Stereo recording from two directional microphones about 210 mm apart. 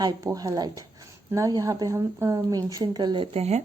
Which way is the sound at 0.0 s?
15° right (ahead or behind).